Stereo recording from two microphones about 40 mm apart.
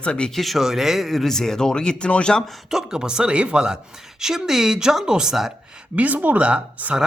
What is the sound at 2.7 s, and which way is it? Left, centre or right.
Speech, centre.